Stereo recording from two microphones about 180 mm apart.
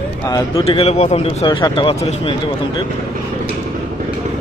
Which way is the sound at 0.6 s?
35° left (ahead or behind).